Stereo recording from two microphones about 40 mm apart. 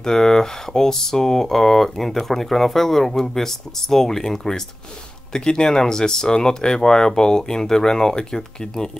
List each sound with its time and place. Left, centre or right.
0.0 s speech: centre